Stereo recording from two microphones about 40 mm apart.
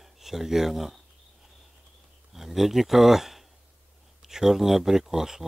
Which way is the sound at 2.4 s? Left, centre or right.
Centre.